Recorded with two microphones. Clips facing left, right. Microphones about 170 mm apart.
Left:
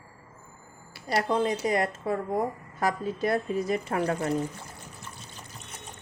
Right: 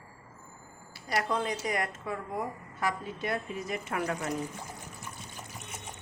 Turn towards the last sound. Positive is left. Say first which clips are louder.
# left 5 dB
turn(degrees=35)  # may be behind; listen again after turning